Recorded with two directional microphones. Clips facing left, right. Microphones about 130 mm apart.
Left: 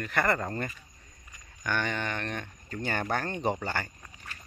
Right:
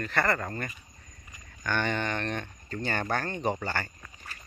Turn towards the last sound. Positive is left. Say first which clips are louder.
# even
turn(degrees=15)  # may be behind; listen again after turning